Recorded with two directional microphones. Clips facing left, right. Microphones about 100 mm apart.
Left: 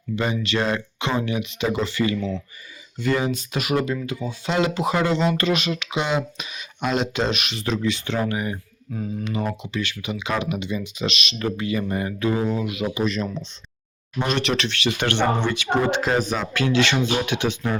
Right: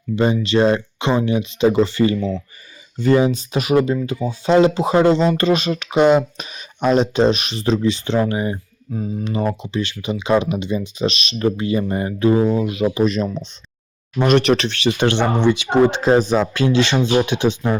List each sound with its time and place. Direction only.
0.2 s speech: 30° right (ahead or behind)
14.3 s speech: 50° right (ahead or behind); by 17.7 s 25° right (ahead or behind)